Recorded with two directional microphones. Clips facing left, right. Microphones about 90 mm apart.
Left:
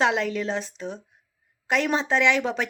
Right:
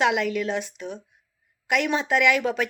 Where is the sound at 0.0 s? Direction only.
30° left (ahead or behind).